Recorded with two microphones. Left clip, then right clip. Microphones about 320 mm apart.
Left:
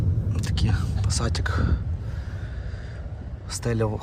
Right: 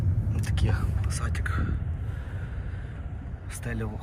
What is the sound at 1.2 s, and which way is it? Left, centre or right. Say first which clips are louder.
Speech: left 7 dB; centre.